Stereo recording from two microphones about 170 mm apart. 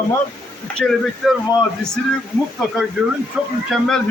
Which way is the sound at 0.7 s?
5° left (ahead or behind).